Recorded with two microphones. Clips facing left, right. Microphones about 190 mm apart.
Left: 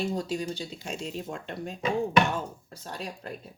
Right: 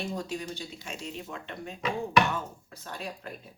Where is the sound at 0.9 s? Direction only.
40° left (ahead or behind).